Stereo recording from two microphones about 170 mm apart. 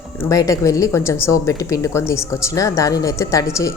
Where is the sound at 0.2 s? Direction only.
20° left (ahead or behind).